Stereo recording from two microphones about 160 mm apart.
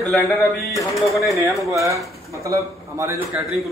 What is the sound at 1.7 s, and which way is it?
A man's voice, 20° right (ahead or behind).